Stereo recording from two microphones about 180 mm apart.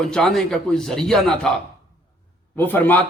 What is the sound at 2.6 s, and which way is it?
Speech, 10° left (ahead or behind).